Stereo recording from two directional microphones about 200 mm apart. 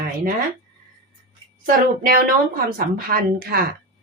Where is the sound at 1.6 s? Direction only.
45° right (ahead or behind).